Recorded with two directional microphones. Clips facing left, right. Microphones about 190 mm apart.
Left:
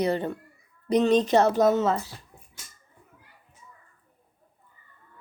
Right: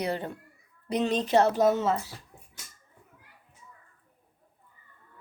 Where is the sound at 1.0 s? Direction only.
45° left (ahead or behind).